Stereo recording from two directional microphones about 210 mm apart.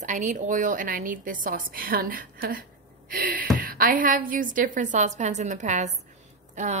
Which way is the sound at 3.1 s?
40° right (ahead or behind).